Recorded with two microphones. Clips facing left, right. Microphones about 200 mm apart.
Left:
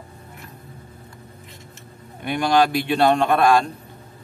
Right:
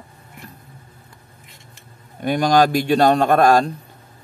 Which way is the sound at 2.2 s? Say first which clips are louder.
Right 3 dB; 40° right (ahead or behind).